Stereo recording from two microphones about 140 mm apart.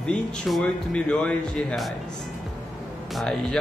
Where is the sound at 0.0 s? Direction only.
5° left (ahead or behind).